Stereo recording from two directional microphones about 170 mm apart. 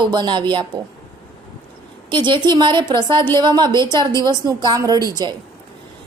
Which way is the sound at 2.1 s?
30° right (ahead or behind).